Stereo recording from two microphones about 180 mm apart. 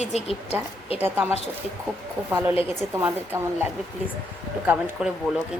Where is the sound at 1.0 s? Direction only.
10° right (ahead or behind).